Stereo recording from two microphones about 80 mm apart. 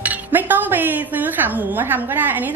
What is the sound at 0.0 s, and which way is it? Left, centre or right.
Speech, right.